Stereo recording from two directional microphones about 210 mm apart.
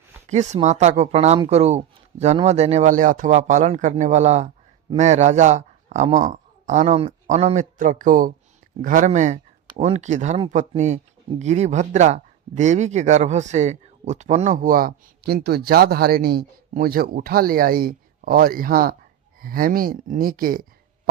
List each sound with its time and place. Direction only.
0.3 s speech: 35° right (ahead or behind)